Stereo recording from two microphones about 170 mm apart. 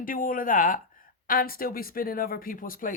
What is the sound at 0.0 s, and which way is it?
Speech, 55° left (ahead or behind).